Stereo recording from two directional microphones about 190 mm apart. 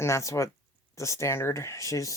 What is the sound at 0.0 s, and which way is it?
Speech, 15° left (ahead or behind).